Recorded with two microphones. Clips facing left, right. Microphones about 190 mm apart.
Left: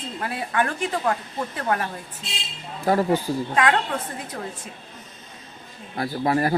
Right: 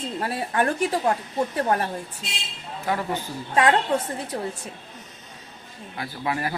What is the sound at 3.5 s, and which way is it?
Speech, 35° right (ahead or behind).